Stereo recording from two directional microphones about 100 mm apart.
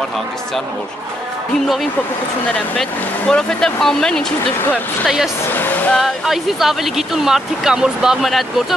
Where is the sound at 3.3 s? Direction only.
5° left (ahead or behind).